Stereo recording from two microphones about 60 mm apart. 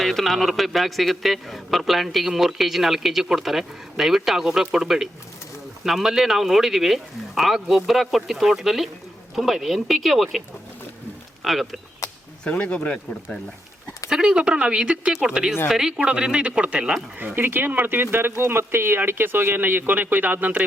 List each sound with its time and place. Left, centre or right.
0.0 s a man's voice: centre
11.4 s a man's voice: centre
12.5 s speech: centre
14.1 s speech: centre
17.2 s speech: right